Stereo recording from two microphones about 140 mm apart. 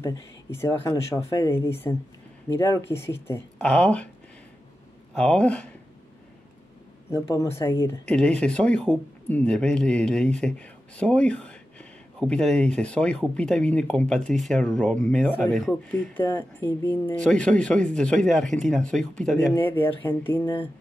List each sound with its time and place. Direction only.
0.0 s speech: 20° left (ahead or behind)
5.1 s speech: 5° left (ahead or behind)
7.1 s speech: 20° left (ahead or behind)
8.1 s speech: 10° left (ahead or behind)